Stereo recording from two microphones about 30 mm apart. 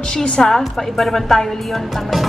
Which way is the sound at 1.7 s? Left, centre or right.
Centre.